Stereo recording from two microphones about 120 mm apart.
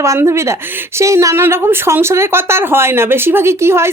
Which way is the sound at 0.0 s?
25° right (ahead or behind).